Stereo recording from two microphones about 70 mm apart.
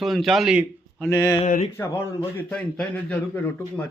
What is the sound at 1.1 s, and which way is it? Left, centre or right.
Speech, left.